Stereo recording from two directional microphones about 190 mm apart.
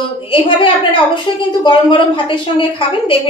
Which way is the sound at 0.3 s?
25° left (ahead or behind).